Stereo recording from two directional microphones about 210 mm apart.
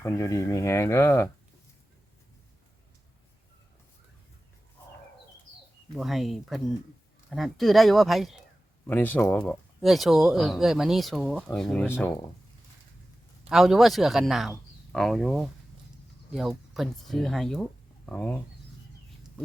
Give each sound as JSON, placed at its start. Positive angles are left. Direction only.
{"t": 0.0, "sound": "speech", "side_deg": 15}
{"t": 5.9, "sound": "speech", "side_deg": 0}
{"t": 13.5, "sound": "speech", "side_deg": 0}